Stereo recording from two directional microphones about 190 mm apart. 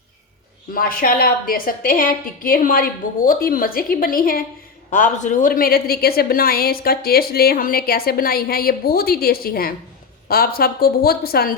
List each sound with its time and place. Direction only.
0.7 s a woman's voice: 50° left (ahead or behind)